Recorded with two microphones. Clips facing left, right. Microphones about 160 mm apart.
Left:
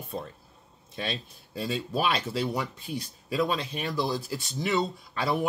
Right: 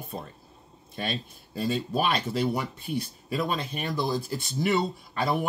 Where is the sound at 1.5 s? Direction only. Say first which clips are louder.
Right 3 dB; centre (ahead or behind).